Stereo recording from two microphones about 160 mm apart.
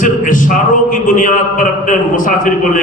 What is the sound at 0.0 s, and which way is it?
A man's voice, 55° left (ahead or behind).